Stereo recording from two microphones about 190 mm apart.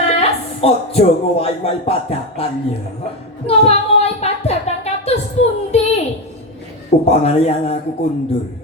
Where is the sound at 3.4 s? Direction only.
30° left (ahead or behind).